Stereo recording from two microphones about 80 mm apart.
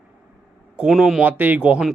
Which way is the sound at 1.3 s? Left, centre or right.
Right.